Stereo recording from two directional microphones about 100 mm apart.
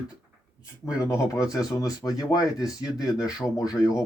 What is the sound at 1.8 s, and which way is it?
Speech, 35° left (ahead or behind).